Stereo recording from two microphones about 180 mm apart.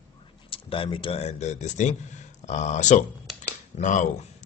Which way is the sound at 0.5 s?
30° left (ahead or behind).